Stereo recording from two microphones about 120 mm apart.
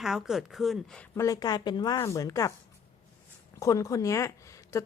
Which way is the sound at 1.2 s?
30° left (ahead or behind).